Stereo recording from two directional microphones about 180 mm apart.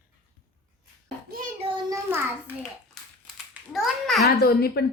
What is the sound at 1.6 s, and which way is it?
Child singing, 25° right (ahead or behind).